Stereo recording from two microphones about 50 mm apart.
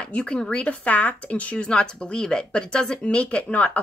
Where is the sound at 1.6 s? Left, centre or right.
Centre.